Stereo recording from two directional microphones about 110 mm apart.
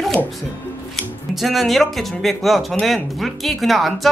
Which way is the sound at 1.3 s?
Centre (ahead or behind).